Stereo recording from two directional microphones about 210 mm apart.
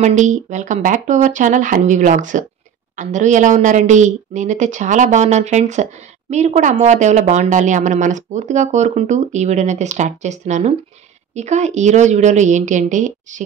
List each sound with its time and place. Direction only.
0.0 s speech: 35° right (ahead or behind)